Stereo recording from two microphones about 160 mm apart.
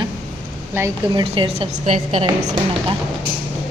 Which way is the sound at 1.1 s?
35° right (ahead or behind).